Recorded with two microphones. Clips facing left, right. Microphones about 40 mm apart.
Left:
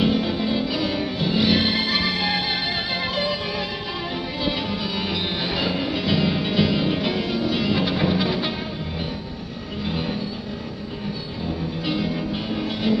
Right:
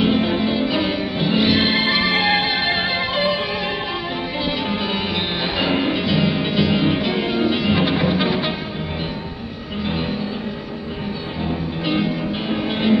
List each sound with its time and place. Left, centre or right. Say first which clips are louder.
0.0 s music: right 3 dB; right
5.6 s music: right 7 dB; right
6.0 s music: right 2 dB; centre
11.8 s music: right 4 dB; right